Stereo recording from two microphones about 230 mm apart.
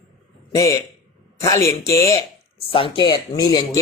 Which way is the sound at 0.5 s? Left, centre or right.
Centre.